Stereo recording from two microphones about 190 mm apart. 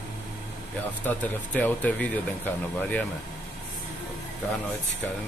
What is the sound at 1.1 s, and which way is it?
Speech, 10° left (ahead or behind).